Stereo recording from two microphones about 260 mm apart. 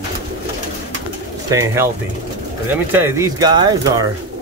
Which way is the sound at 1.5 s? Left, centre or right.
Centre.